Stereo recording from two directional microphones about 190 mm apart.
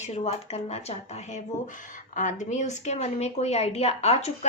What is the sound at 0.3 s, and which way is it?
Speech, 35° left (ahead or behind).